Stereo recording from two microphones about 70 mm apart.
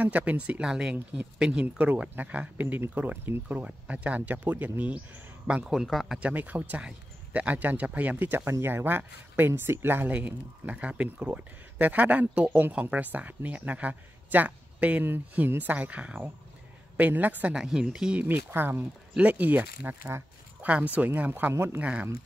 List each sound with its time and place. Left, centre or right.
0.0 s speech: right
1.8 s speech: right
5.7 s a man's voice: centre
6.1 s speech: right
8.5 s speech: right
10.1 s speech: centre
17.6 s speech: centre
18.3 s speech: right